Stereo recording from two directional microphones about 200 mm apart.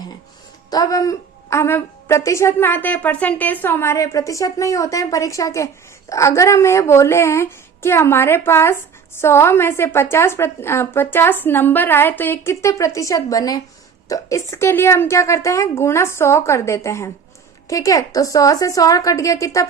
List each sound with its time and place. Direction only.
0.7 s a woman's voice: 15° left (ahead or behind)